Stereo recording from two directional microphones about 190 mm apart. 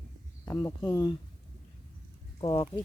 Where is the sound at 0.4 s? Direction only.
15° left (ahead or behind).